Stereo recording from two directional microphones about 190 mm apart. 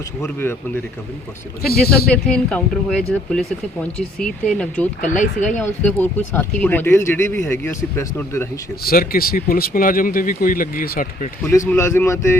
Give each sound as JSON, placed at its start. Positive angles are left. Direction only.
{"t": 0.2, "sound": "speech", "side_deg": 10}
{"t": 1.8, "sound": "speech", "side_deg": 0}
{"t": 4.9, "sound": "speech", "side_deg": 40}
{"t": 5.5, "sound": "speech", "side_deg": 10}
{"t": 8.8, "sound": "speech", "side_deg": 50}
{"t": 11.7, "sound": "speech", "side_deg": 15}